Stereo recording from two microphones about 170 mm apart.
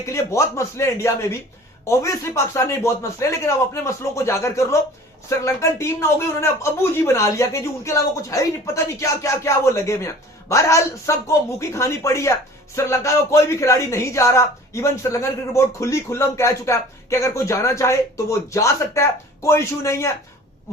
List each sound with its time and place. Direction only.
0.0 s speech: 20° left (ahead or behind)